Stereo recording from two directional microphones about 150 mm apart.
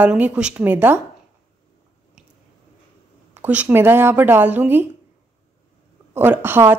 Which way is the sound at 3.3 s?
10° right (ahead or behind).